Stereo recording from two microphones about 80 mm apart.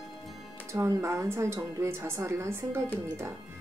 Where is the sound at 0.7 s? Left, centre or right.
Right.